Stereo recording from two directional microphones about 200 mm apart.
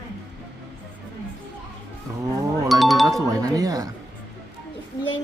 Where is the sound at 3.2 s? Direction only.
20° right (ahead or behind).